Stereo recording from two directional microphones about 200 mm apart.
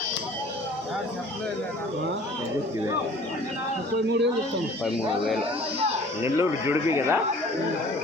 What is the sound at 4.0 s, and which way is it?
Speech, 60° right (ahead or behind).